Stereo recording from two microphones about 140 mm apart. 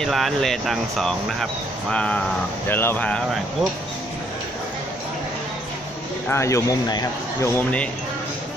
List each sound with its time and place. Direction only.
0.0 s speech: centre (ahead or behind)
6.2 s a man's voice: 20° left (ahead or behind)